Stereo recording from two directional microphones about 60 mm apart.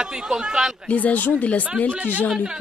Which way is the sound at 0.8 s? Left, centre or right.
Left.